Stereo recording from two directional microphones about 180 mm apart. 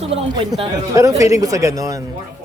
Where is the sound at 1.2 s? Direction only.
20° right (ahead or behind).